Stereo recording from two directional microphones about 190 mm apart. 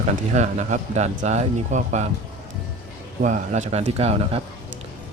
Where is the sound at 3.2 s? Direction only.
40° right (ahead or behind).